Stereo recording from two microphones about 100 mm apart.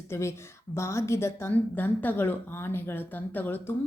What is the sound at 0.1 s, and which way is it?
A woman's voice, 25° left (ahead or behind).